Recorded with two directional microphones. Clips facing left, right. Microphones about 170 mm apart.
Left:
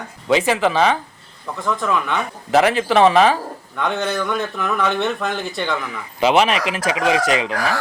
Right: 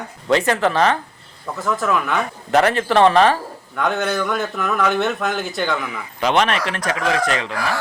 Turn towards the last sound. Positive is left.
turn(degrees=5)  # may be behind; listen again after turning